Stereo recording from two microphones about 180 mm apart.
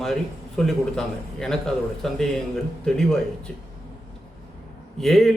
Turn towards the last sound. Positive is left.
turn(degrees=0)  # may be behind; listen again after turning